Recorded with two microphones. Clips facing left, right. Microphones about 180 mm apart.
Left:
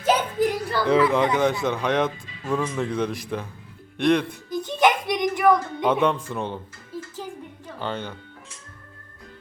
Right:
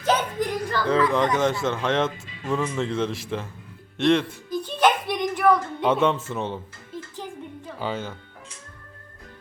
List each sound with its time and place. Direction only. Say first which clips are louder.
0.0 s a sound: left 2 dB; 10° left (ahead or behind)
1.4 s speech: left 1 dB; centre (ahead or behind)
1.7 s speech: left 1 dB; 15° left (ahead or behind); by 4.4 s centre (ahead or behind)
4.5 s a sound: left 1 dB; 15° left (ahead or behind)
5.8 s speech: right 1 dB; centre (ahead or behind)
7.8 s speech: right 1 dB; 5° right (ahead or behind)